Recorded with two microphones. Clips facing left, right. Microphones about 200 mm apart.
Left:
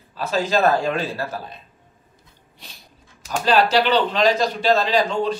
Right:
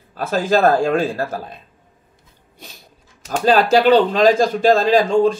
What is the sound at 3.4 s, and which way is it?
Speech, 50° right (ahead or behind).